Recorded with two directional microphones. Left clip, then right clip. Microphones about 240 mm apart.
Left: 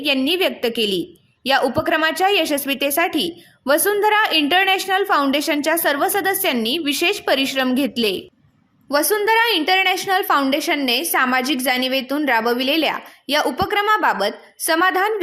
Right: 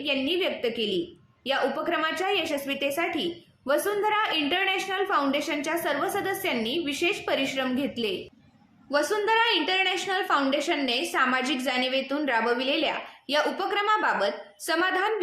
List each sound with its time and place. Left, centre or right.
0.0 s a woman's voice: left